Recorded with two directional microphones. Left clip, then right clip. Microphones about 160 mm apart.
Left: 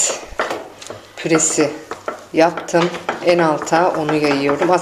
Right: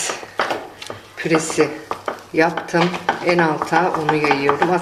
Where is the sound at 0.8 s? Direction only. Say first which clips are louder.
Left 2 dB; 20° left (ahead or behind).